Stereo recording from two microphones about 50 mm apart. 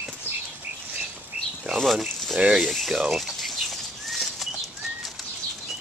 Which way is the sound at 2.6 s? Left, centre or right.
Centre.